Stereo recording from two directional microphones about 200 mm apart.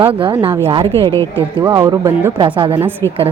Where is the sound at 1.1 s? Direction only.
10° left (ahead or behind).